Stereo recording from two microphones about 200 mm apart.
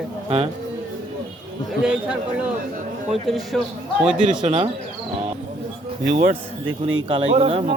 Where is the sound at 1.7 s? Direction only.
5° right (ahead or behind).